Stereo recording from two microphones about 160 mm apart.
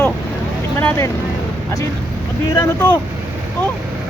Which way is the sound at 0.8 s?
15° left (ahead or behind).